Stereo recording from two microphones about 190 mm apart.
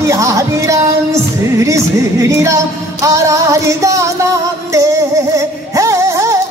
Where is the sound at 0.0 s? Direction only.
15° right (ahead or behind).